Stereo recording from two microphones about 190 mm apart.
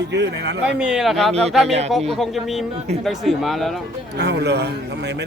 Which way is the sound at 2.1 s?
Centre (ahead or behind).